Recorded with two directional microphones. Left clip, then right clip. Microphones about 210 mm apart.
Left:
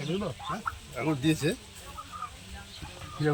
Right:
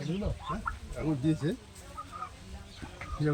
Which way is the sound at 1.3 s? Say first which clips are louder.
Left 4 dB; centre (ahead or behind).